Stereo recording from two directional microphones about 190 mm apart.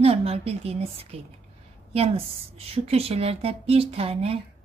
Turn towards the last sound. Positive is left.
turn(degrees=-30)  # may be behind; listen again after turning